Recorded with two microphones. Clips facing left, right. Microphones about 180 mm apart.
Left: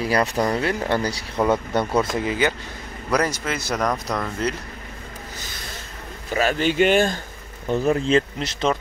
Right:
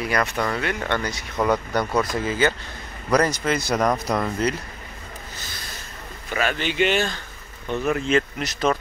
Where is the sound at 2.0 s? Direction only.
20° left (ahead or behind); by 3.9 s centre (ahead or behind).